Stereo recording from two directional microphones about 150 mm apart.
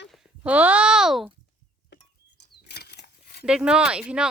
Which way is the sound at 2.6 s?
90° left.